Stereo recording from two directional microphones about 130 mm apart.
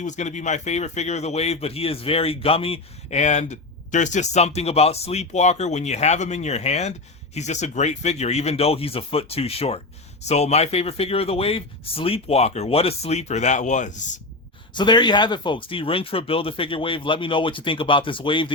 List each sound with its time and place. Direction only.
0.0 s speech: 65° left (ahead or behind)
14.7 s speech: 35° left (ahead or behind)